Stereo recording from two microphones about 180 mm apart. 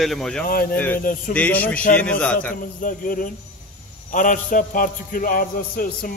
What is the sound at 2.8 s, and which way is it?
A man's voice, 50° left (ahead or behind).